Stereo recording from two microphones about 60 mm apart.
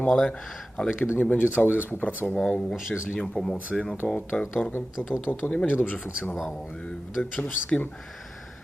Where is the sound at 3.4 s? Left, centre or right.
Centre.